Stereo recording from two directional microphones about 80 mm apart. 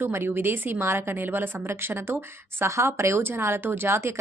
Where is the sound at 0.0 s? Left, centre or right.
Right.